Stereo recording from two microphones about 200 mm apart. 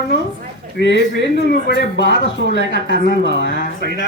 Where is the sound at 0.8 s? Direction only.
60° left (ahead or behind).